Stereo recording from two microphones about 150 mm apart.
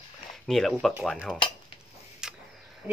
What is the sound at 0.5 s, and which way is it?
Speech, centre (ahead or behind).